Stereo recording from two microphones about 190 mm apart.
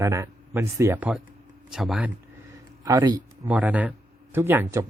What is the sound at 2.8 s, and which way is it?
Speech, 20° right (ahead or behind).